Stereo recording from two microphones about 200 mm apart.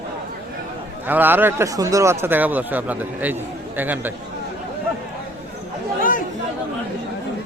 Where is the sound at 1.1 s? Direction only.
10° right (ahead or behind).